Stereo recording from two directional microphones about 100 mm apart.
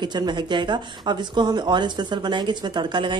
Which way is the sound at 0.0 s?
45° right (ahead or behind).